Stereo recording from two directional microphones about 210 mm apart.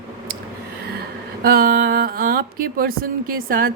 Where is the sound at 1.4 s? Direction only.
45° right (ahead or behind).